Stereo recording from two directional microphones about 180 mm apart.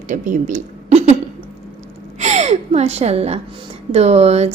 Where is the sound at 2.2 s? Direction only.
40° right (ahead or behind).